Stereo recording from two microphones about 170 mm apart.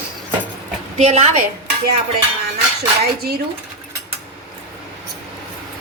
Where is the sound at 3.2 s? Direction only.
65° right (ahead or behind).